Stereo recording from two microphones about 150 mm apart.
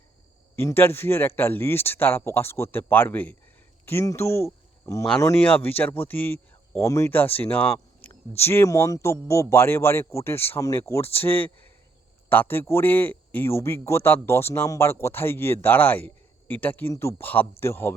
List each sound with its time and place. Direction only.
0.5 s a man's voice: 15° left (ahead or behind)